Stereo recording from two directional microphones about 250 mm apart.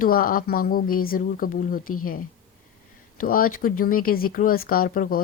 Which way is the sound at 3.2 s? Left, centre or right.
Left.